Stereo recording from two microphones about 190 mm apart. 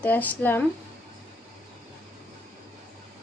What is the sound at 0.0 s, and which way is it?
Speech, 10° left (ahead or behind).